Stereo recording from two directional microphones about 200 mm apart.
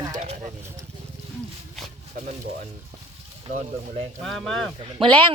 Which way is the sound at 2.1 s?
40° right (ahead or behind).